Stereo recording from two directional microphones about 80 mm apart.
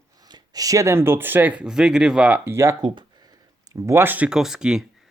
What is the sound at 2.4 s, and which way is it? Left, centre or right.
Speech, right.